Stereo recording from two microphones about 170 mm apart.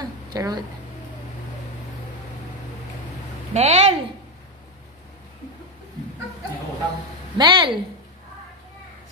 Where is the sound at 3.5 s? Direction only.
40° right (ahead or behind).